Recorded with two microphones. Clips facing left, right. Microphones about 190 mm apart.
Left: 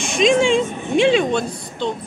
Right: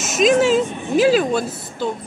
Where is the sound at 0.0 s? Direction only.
5° right (ahead or behind).